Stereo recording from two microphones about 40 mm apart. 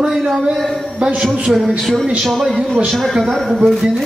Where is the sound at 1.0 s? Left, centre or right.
Right.